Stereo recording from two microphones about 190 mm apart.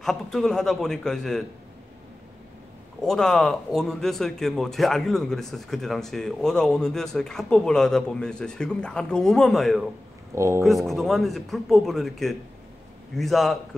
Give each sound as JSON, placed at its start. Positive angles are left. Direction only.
{"t": 0.0, "sound": "speech", "side_deg": 0}
{"t": 3.0, "sound": "speech", "side_deg": 0}
{"t": 10.3, "sound": "speech", "side_deg": -15}
{"t": 10.6, "sound": "speech", "side_deg": 0}